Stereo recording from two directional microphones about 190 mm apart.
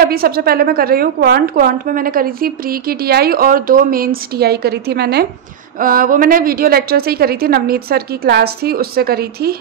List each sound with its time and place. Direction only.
0.0 s a woman's voice: 50° right (ahead or behind)